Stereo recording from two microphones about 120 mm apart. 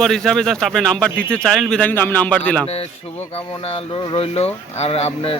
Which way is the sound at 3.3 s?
55° left (ahead or behind).